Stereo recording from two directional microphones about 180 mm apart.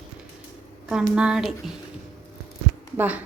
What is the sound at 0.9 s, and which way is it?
Speech, 5° right (ahead or behind).